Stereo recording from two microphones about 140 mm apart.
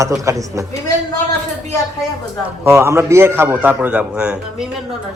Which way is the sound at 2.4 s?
20° right (ahead or behind).